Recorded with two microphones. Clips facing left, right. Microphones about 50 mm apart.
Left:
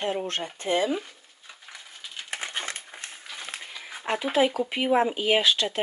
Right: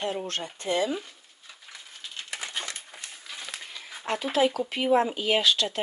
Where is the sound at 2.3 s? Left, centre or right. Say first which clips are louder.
Left 3 dB; left.